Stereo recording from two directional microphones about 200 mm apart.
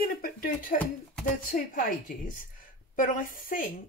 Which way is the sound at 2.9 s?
40° left (ahead or behind).